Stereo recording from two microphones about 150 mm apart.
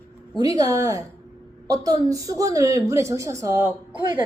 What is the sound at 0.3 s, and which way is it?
A woman's voice, 25° right (ahead or behind).